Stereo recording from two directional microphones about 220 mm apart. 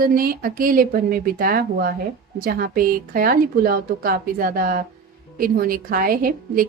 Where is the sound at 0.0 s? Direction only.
40° right (ahead or behind).